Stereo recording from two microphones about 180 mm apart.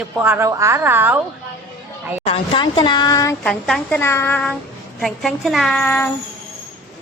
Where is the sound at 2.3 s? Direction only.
25° left (ahead or behind).